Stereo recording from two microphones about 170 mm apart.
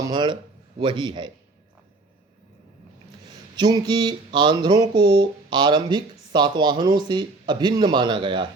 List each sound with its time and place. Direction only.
0.0 s speech: 25° right (ahead or behind)
3.5 s speech: 25° right (ahead or behind)